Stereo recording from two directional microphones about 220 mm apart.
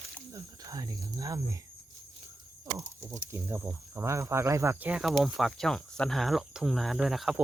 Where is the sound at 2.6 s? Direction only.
15° right (ahead or behind).